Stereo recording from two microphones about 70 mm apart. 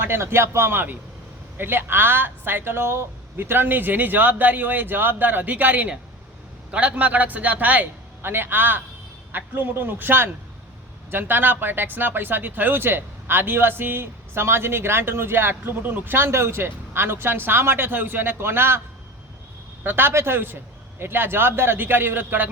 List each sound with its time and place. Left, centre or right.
0.0 s a woman's voice: right
19.8 s speech: right